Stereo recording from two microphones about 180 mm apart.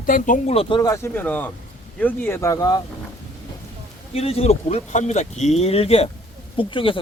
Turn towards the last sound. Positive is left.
turn(degrees=30)  # may be behind; listen again after turning